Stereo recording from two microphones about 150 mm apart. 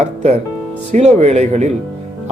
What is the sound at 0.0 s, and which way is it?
Speech, 50° right (ahead or behind).